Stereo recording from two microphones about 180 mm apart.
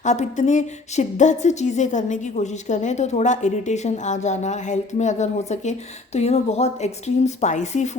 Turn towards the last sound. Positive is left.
turn(degrees=40)  # may be behind; listen again after turning